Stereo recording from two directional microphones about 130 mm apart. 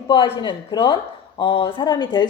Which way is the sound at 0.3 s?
35° left (ahead or behind).